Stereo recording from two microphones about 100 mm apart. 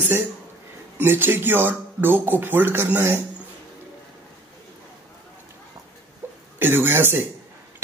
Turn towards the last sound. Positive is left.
turn(degrees=-25)  # may be behind; listen again after turning